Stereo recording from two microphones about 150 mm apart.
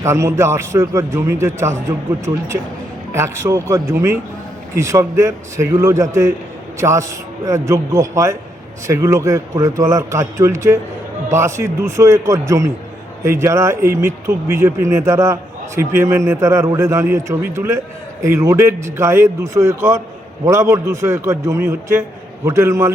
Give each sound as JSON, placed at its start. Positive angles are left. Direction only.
{"t": 0.0, "sound": "a man's voice", "side_deg": -20}
{"t": 3.1, "sound": "a man's voice", "side_deg": -20}